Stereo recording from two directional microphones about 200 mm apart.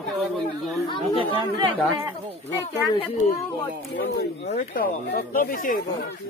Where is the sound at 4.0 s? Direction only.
40° left (ahead or behind).